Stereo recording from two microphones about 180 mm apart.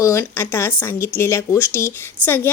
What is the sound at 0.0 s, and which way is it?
A woman's voice, 15° left (ahead or behind).